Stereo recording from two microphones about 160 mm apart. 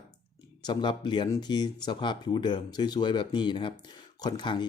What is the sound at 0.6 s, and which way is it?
Speech, 30° left (ahead or behind).